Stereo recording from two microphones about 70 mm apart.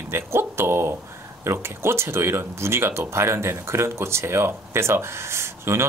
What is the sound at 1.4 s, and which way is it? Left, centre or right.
Speech, right.